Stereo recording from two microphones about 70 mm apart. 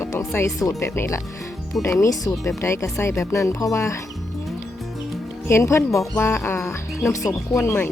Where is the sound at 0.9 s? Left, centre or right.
Left.